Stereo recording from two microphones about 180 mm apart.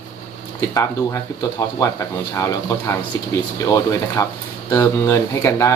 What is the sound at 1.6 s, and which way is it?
Speech, 20° left (ahead or behind).